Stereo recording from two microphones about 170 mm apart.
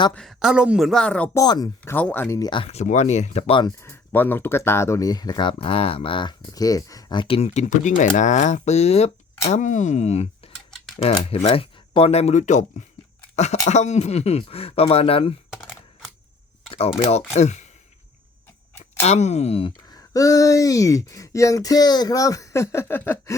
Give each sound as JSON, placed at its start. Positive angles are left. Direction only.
{"t": 0.1, "sound": "speech", "side_deg": 0}
{"t": 1.4, "sound": "speech", "side_deg": 20}
{"t": 1.8, "sound": "speech", "side_deg": 10}
{"t": 2.4, "sound": "speech", "side_deg": 30}
{"t": 3.8, "sound": "speech", "side_deg": 10}
{"t": 15.6, "sound": "coin", "side_deg": 0}
{"t": 17.0, "sound": "speech", "side_deg": 40}
{"t": 18.8, "sound": "speech", "side_deg": 40}